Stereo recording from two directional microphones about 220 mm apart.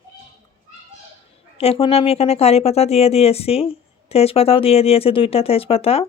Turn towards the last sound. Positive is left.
turn(degrees=25)  # may be behind; listen again after turning